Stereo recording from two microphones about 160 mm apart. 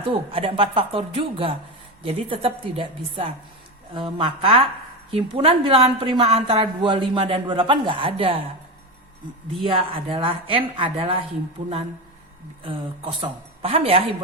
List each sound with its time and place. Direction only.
0.0 s a woman's voice: 35° right (ahead or behind)
9.6 s a woman's voice: 35° right (ahead or behind)
12.6 s a woman's voice: 35° right (ahead or behind)